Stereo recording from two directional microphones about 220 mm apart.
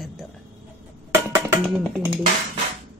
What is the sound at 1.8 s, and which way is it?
Speech, 5° right (ahead or behind).